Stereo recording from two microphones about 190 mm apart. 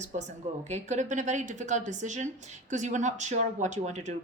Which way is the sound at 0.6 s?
35° right (ahead or behind).